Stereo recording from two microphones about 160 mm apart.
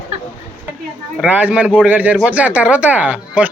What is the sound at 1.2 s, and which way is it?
Speech, 10° right (ahead or behind).